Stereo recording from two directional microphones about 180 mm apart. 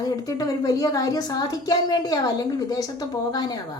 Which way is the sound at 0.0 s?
20° left (ahead or behind).